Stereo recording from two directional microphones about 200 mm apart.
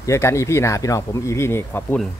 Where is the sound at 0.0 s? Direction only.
15° left (ahead or behind).